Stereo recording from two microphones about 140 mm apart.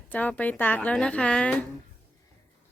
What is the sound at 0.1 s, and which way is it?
A woman's voice, 10° left (ahead or behind).